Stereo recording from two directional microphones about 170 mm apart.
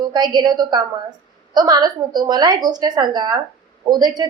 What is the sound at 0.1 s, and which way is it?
A woman's voice, 25° right (ahead or behind).